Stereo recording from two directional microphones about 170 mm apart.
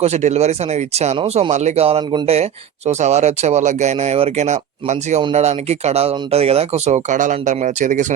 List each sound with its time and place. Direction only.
0.0 s speech: 40° right (ahead or behind)